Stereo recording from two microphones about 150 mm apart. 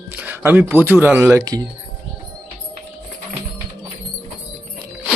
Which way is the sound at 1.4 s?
25° right (ahead or behind).